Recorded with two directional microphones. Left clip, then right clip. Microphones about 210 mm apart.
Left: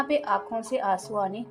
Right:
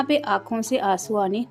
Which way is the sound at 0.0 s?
35° right (ahead or behind).